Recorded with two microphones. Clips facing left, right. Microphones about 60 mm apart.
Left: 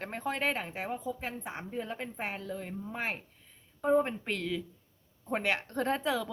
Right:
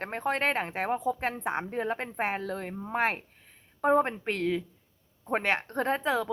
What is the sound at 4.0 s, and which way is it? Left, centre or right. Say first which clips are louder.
A woman's voice: right 4 dB; right.